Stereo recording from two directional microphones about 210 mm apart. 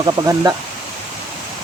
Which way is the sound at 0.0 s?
20° right (ahead or behind).